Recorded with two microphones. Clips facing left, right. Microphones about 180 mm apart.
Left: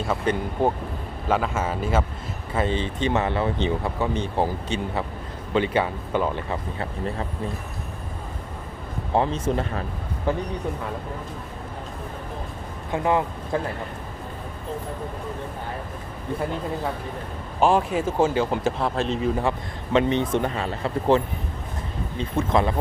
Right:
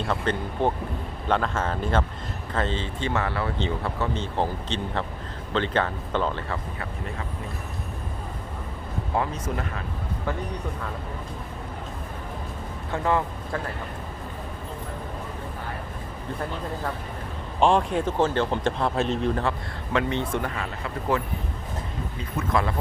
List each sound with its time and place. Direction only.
0.1 s speech: 10° left (ahead or behind)
9.1 s a man's voice: 25° left (ahead or behind)
12.9 s a man's voice: 15° left (ahead or behind)
17.6 s speech: 5° left (ahead or behind)
19.4 s a man's voice: 20° left (ahead or behind)
22.2 s a man's voice: 25° left (ahead or behind)